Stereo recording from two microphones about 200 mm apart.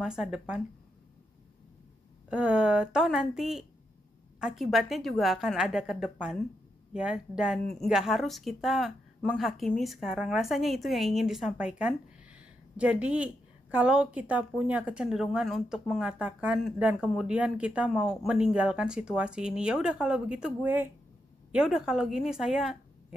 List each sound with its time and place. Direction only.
0.0 s a woman's voice: 5° right (ahead or behind)
2.2 s a woman's voice: 5° right (ahead or behind)